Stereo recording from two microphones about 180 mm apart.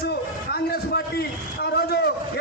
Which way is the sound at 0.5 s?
65° left (ahead or behind).